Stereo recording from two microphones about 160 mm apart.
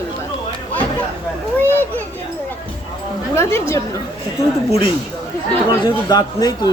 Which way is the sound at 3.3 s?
15° left (ahead or behind).